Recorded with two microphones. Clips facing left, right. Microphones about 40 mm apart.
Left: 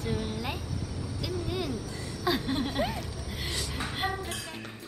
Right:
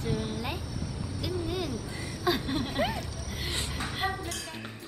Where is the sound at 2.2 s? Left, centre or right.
Centre.